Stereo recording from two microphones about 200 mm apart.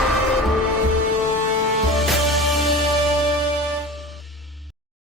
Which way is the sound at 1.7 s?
Centre (ahead or behind).